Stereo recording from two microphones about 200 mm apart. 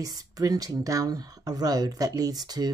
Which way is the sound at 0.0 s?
20° right (ahead or behind).